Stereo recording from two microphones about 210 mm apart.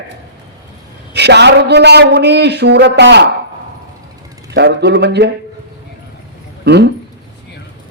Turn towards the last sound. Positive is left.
turn(degrees=-55)  # may be behind; listen again after turning